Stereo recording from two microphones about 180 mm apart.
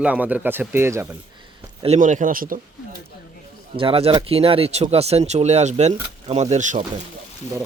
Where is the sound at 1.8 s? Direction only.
40° right (ahead or behind).